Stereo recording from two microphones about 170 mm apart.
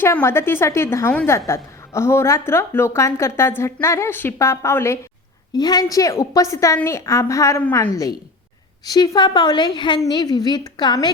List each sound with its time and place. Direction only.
0.0 s a woman's voice: 15° left (ahead or behind)